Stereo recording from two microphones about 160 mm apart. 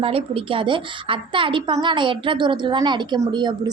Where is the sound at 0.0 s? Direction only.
35° right (ahead or behind).